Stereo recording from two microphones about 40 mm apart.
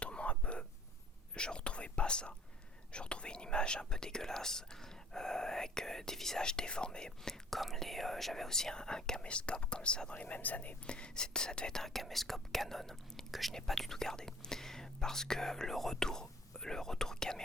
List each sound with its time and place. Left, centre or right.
0.0 s whispering: left
2.9 s speech: left
7.2 s speech: centre; by 10.8 s left
10.8 s speech: left
11.8 s speech: centre